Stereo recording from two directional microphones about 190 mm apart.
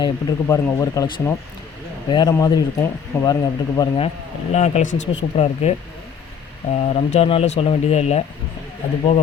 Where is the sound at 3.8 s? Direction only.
30° left (ahead or behind).